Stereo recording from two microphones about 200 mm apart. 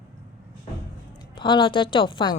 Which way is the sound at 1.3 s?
25° left (ahead or behind).